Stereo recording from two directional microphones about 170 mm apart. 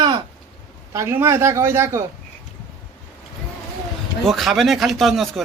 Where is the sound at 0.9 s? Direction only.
15° right (ahead or behind).